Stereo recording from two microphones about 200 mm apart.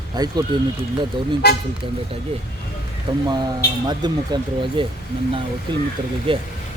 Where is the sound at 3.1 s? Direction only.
20° right (ahead or behind).